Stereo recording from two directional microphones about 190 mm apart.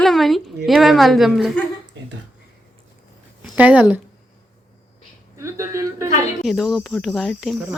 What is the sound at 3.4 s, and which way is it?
Speech, 5° right (ahead or behind).